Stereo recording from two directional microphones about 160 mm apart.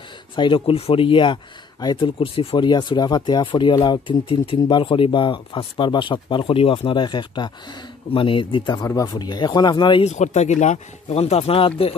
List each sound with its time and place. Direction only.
0.4 s speech: 35° left (ahead or behind)
10.0 s speech: 45° left (ahead or behind)